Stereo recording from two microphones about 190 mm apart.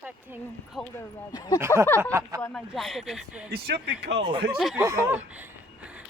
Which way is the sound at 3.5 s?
60° right (ahead or behind).